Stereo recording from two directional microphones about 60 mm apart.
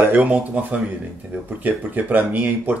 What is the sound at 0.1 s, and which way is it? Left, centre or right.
Speech, right.